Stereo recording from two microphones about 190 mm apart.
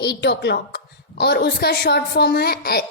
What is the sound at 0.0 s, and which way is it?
A woman's voice, 60° left (ahead or behind).